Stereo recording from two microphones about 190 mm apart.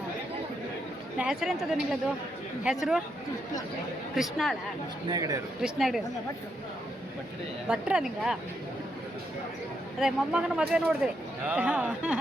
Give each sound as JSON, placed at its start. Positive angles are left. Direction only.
{"t": 1.2, "sound": "speech", "side_deg": -5}
{"t": 4.1, "sound": "speech", "side_deg": 0}
{"t": 5.0, "sound": "speech", "side_deg": -20}
{"t": 5.6, "sound": "speech", "side_deg": 0}
{"t": 7.7, "sound": "speech", "side_deg": -5}
{"t": 10.0, "sound": "speech", "side_deg": -5}